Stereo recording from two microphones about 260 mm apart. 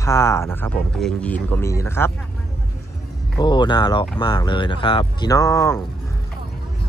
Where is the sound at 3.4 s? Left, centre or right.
Centre.